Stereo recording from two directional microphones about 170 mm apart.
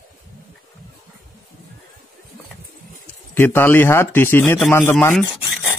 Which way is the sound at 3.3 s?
10° left (ahead or behind).